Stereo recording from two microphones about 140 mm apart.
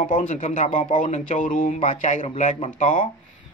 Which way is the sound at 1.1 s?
70° left (ahead or behind).